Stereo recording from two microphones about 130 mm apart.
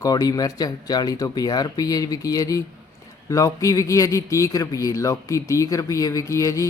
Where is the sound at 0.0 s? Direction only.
30° left (ahead or behind).